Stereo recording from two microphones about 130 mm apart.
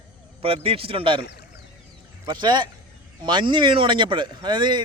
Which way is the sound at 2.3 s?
35° right (ahead or behind).